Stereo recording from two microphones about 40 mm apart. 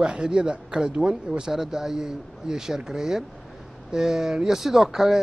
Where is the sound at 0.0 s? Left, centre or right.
Centre.